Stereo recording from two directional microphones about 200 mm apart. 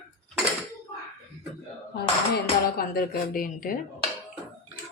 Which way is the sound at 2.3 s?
50° left (ahead or behind).